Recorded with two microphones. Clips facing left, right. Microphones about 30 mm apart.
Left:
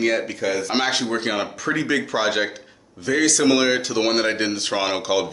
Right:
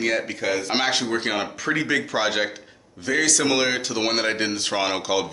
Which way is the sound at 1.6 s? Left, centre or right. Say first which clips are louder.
Left 1 dB; centre.